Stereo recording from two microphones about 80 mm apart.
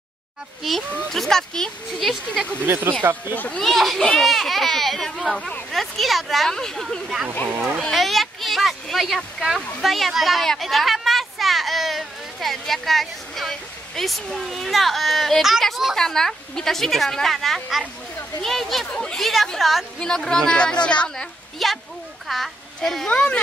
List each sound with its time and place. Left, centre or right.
0.9 s speech: centre
2.6 s speech: right
3.3 s speech: centre
3.6 s speech: centre
21.6 s speech: centre